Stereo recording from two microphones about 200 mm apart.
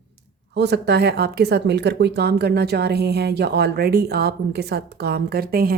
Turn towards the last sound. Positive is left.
turn(degrees=-50)  # may be behind; listen again after turning